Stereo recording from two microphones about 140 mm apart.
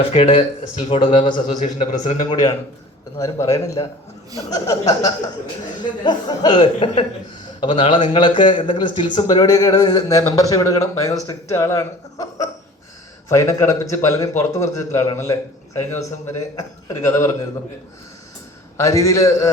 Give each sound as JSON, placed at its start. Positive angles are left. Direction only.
{"t": 0.1, "sound": "speech", "side_deg": 50}
{"t": 0.9, "sound": "speech", "side_deg": 35}
{"t": 1.5, "sound": "speech", "side_deg": 60}
{"t": 3.2, "sound": "a man's voice", "side_deg": 25}
{"t": 18.8, "sound": "a man's voice", "side_deg": 25}